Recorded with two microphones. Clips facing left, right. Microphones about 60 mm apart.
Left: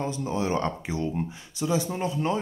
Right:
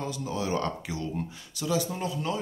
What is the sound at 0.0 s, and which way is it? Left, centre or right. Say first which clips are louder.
Speech: left 4 dB; left.